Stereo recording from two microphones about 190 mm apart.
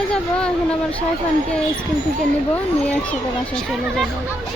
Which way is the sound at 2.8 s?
5° left (ahead or behind).